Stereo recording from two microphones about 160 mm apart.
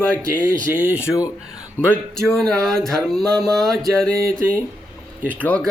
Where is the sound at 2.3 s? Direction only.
5° left (ahead or behind).